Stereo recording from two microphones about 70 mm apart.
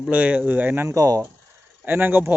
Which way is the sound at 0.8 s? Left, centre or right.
Right.